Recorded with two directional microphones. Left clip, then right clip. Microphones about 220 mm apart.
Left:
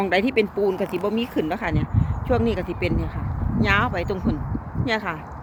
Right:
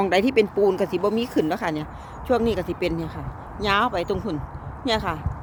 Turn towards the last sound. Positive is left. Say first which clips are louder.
# right 1 dB
turn(degrees=-15)  # may be behind; listen again after turning